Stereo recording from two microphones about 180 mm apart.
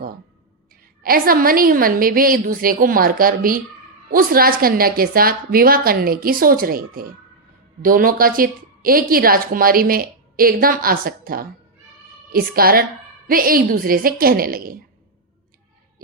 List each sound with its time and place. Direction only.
1.0 s a woman's voice: 55° right (ahead or behind)